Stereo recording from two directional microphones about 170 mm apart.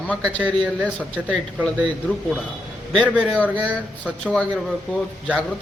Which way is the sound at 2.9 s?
Centre (ahead or behind).